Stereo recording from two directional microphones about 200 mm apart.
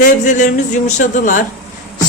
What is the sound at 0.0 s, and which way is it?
Speech, 40° left (ahead or behind).